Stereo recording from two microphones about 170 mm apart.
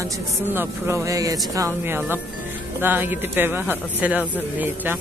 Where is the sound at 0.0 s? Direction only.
15° right (ahead or behind).